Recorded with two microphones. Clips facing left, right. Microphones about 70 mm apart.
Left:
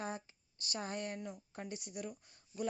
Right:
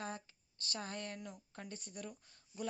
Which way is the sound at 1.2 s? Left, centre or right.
Centre.